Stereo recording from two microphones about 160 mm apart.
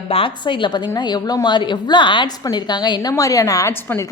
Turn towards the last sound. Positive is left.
turn(degrees=15)  # may be behind; listen again after turning